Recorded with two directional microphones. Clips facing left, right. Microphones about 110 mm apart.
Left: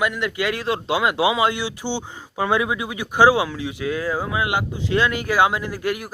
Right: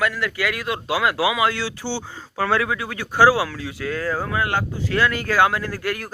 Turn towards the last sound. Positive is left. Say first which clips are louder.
# left 1 dB
turn(degrees=15)  # may be behind; listen again after turning